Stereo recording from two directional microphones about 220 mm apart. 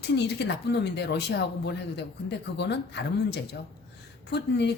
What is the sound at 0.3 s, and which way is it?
Speech, 50° left (ahead or behind).